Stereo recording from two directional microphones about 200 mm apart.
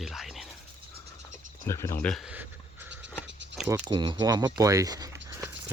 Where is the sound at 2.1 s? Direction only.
5° right (ahead or behind).